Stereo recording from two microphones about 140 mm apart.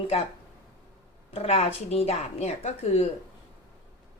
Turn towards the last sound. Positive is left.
turn(degrees=45)  # may be behind; listen again after turning